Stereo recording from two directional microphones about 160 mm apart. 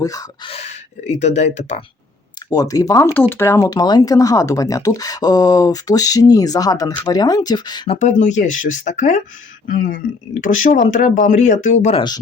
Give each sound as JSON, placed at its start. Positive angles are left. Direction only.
{"t": 0.0, "sound": "speech", "side_deg": 25}
{"t": 0.5, "sound": "speech", "side_deg": 45}
{"t": 2.5, "sound": "speech", "side_deg": 20}
{"t": 7.9, "sound": "speech", "side_deg": 45}
{"t": 11.9, "sound": "speech", "side_deg": 25}